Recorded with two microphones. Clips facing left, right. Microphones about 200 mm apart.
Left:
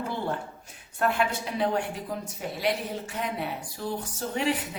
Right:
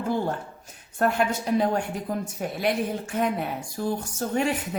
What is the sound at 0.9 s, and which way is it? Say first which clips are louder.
A woman's voice: right 3 dB; 45° right (ahead or behind).